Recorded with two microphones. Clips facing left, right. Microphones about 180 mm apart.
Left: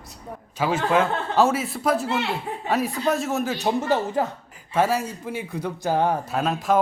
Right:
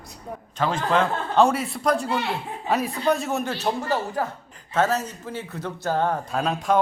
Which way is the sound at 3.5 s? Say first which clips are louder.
Left 3 dB; 20° left (ahead or behind).